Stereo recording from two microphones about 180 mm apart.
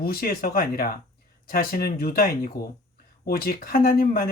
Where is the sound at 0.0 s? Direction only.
55° left (ahead or behind).